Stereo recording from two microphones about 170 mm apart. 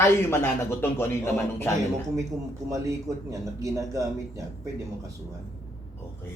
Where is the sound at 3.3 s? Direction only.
20° right (ahead or behind).